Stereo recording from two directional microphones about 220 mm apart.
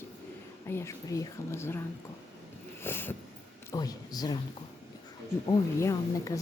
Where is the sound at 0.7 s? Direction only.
10° left (ahead or behind).